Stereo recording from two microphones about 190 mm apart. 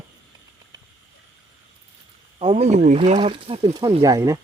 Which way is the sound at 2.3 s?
30° right (ahead or behind).